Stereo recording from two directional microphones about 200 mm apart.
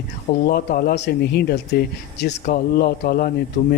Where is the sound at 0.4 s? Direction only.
50° left (ahead or behind).